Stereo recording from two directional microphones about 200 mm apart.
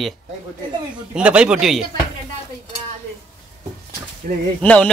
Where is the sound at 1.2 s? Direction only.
5° right (ahead or behind).